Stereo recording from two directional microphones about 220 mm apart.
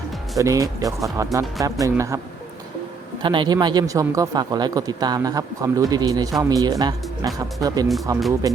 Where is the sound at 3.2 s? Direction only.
20° right (ahead or behind).